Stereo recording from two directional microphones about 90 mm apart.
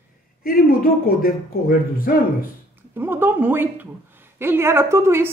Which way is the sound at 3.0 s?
25° right (ahead or behind).